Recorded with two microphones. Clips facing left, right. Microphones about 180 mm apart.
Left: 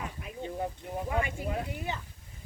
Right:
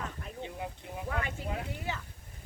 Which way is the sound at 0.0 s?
10° left (ahead or behind).